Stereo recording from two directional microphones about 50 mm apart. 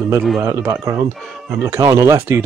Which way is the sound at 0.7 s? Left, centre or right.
Right.